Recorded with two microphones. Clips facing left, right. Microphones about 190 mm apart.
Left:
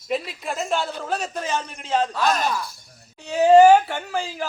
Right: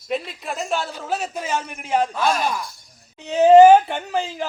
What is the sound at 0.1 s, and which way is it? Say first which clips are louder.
A man's voice: even; centre (ahead or behind).